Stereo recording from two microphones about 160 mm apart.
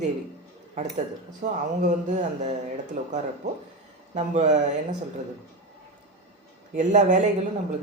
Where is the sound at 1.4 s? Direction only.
55° right (ahead or behind).